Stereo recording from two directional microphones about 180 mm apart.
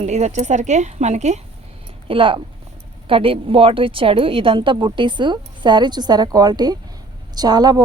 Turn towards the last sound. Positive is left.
turn(degrees=-20)  # may be behind; listen again after turning